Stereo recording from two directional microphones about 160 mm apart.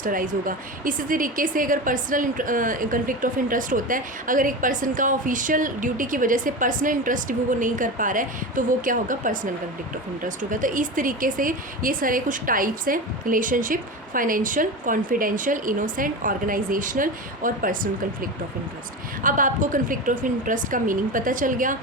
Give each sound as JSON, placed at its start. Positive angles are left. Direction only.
{"t": 0.0, "sound": "a woman's voice", "side_deg": -55}
{"t": 19.2, "sound": "a woman's voice", "side_deg": -55}